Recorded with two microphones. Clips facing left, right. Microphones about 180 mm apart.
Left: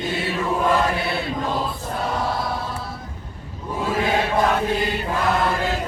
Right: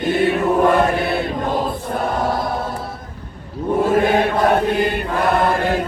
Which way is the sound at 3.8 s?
50° right (ahead or behind).